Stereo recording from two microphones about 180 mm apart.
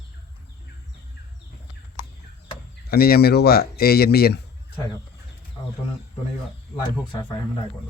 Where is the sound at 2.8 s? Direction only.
55° left (ahead or behind).